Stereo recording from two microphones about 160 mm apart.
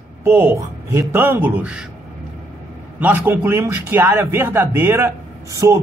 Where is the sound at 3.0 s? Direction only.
10° right (ahead or behind).